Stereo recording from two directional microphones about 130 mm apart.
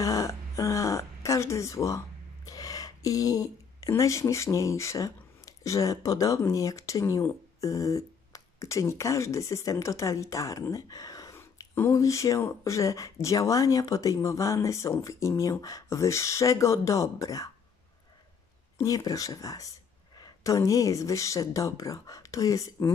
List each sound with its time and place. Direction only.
0.0 s speech: 25° left (ahead or behind)
18.8 s speech: 30° left (ahead or behind)